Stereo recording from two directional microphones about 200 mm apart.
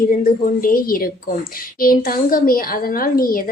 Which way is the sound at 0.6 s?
45° left (ahead or behind).